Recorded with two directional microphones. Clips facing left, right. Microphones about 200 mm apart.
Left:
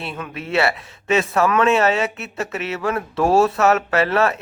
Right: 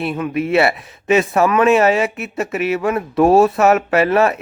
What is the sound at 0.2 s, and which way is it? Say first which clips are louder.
Speech: right 5 dB; 15° right (ahead or behind).